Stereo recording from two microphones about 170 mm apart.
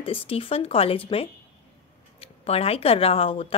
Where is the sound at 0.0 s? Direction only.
35° left (ahead or behind).